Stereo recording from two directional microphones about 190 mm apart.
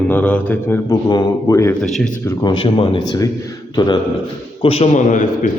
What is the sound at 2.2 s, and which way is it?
Speech, 25° left (ahead or behind).